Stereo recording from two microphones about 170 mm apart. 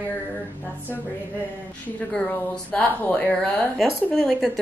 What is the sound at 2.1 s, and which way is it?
Speech, 5° left (ahead or behind).